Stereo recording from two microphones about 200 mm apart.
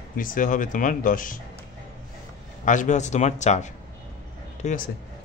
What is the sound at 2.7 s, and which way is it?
Speech, 40° left (ahead or behind).